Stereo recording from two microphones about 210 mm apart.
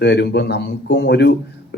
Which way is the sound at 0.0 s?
55° left (ahead or behind).